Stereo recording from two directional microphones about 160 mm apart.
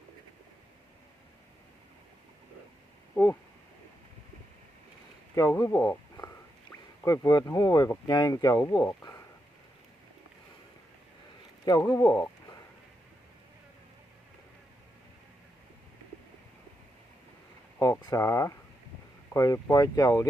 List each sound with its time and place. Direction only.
3.2 s speech: 10° left (ahead or behind)
5.3 s speech: 20° left (ahead or behind)
11.6 s speech: 25° left (ahead or behind)
17.7 s speech: 15° left (ahead or behind)